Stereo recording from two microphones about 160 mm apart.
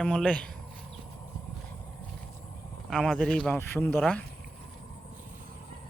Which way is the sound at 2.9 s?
5° left (ahead or behind).